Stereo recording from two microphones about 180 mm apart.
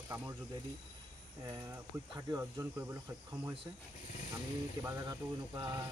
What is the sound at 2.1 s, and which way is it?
Speech, 20° right (ahead or behind).